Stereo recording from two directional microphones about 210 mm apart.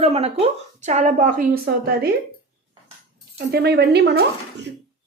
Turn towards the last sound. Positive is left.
turn(degrees=-55)  # may be behind; listen again after turning